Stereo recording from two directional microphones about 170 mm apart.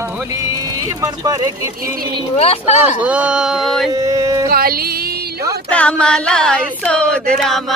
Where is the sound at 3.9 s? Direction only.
20° right (ahead or behind).